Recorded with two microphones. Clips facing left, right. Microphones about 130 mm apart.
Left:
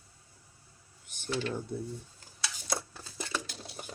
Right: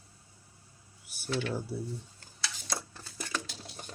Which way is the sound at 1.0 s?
5° right (ahead or behind).